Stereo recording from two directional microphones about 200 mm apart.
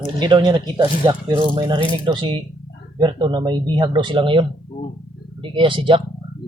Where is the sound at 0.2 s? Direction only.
20° right (ahead or behind).